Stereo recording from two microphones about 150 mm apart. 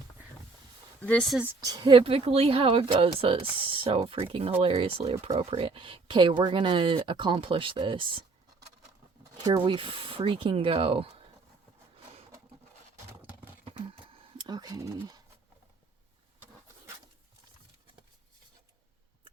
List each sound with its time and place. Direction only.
1.0 s speech: 5° left (ahead or behind)
1.6 s speech: 25° right (ahead or behind)
9.6 s speech: 35° right (ahead or behind)
13.7 s a sound: 35° right (ahead or behind)